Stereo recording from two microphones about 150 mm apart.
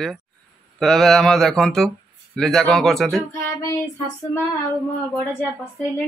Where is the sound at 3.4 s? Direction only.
20° left (ahead or behind).